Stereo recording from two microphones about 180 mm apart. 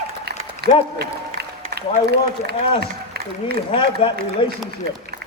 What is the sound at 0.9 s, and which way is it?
A man's voice, 65° right (ahead or behind).